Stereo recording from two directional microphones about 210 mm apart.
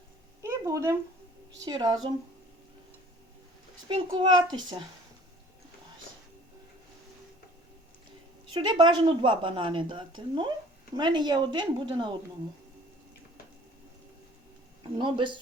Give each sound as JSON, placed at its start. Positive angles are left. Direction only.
{"t": 0.4, "sound": "a sound", "side_deg": -15}
{"t": 1.6, "sound": "a woman's voice", "side_deg": -20}
{"t": 3.8, "sound": "a woman's voice", "side_deg": -25}
{"t": 8.5, "sound": "a woman's voice", "side_deg": -20}
{"t": 14.9, "sound": "a woman's voice", "side_deg": -25}